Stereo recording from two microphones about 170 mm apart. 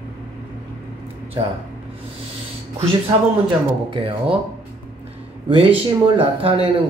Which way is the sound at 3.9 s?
35° right (ahead or behind).